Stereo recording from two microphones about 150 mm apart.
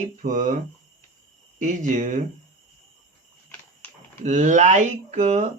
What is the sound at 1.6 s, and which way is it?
Speech, 50° right (ahead or behind).